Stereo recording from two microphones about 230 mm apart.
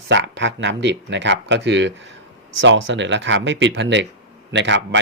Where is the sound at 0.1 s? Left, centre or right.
Right.